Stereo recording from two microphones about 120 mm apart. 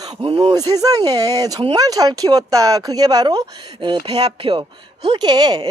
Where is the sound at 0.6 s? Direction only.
30° right (ahead or behind).